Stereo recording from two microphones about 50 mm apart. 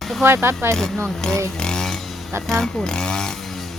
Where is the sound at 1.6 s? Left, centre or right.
Centre.